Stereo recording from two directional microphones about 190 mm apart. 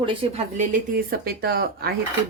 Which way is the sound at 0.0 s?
25° right (ahead or behind).